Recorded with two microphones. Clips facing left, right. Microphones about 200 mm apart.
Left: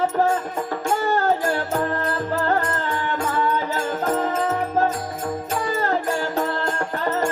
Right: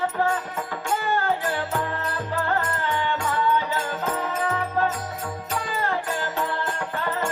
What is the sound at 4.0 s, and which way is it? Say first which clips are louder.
Music: left 5 dB; 45° left (ahead or behind).